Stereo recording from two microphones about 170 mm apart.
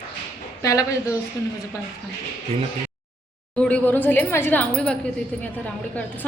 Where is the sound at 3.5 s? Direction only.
10° left (ahead or behind).